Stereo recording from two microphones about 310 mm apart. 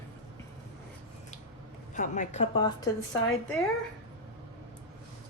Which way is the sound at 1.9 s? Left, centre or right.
Left.